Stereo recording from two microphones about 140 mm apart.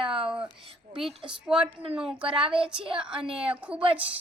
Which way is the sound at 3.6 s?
10° right (ahead or behind).